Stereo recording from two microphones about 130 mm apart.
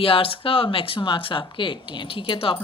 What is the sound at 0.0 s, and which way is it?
Speech, 45° left (ahead or behind).